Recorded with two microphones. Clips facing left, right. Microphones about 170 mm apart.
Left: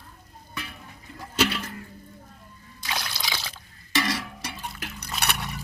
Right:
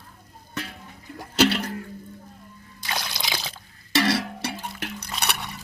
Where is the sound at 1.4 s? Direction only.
70° right (ahead or behind).